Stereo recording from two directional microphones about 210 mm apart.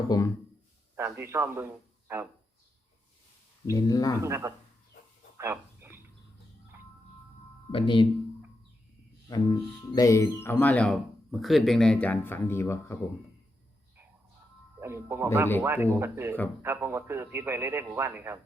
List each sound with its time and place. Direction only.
0.1 s speech: 20° left (ahead or behind)
0.9 s a man's voice: 10° right (ahead or behind)
3.7 s speech: 15° left (ahead or behind)
4.2 s a man's voice: 15° right (ahead or behind)
5.4 s a sound: 10° right (ahead or behind)
7.7 s speech: 25° left (ahead or behind)
9.3 s speech: 20° left (ahead or behind)
14.8 s a man's voice: 10° right (ahead or behind)